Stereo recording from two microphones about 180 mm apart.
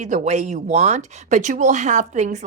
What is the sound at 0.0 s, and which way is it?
Speech, 40° right (ahead or behind).